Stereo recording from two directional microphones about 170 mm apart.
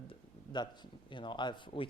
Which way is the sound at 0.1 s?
25° left (ahead or behind).